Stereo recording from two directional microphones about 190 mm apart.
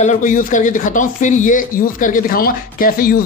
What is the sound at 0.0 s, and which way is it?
Speech, 40° left (ahead or behind).